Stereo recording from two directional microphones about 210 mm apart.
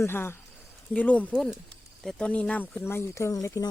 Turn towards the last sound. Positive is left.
turn(degrees=15)  # may be behind; listen again after turning